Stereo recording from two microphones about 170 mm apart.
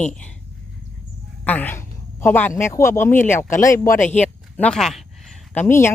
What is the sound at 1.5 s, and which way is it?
Speech, 10° left (ahead or behind).